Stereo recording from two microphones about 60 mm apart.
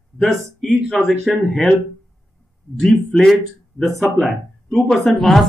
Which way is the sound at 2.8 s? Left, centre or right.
Centre.